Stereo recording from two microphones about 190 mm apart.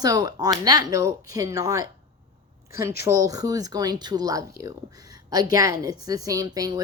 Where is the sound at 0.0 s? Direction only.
20° right (ahead or behind).